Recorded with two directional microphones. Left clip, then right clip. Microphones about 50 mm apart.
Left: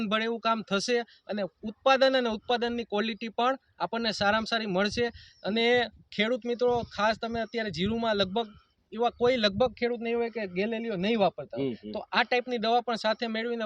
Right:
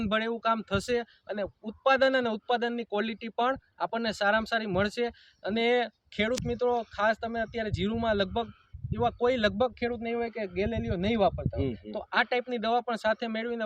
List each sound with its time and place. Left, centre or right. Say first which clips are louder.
0.0 s a man's voice: even; left